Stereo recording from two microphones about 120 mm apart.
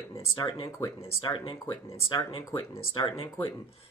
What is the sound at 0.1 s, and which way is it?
Speech, 30° left (ahead or behind).